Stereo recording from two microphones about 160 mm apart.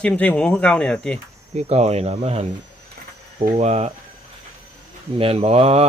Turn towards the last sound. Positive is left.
turn(degrees=-40)  # may be behind; listen again after turning